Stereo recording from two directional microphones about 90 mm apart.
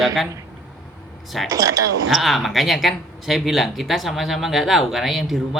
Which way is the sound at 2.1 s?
Centre (ahead or behind).